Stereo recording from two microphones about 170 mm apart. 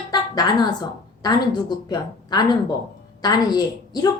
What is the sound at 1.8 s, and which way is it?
Speech, 25° left (ahead or behind).